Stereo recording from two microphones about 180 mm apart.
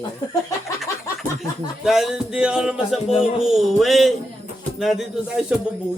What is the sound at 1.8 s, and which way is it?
Speech, centre (ahead or behind).